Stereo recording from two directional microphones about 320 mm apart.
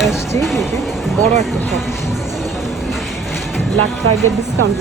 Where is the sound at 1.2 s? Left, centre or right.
Right.